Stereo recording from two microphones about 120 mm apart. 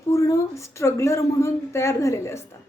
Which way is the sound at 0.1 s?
25° left (ahead or behind).